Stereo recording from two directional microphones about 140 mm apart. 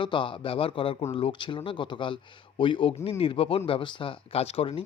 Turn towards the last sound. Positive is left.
turn(degrees=40)  # may be behind; listen again after turning